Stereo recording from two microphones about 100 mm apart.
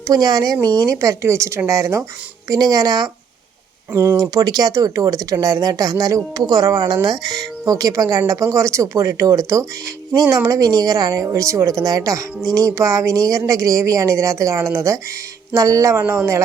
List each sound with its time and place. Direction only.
0.1 s speech: 40° right (ahead or behind)
3.9 s speech: 25° right (ahead or behind)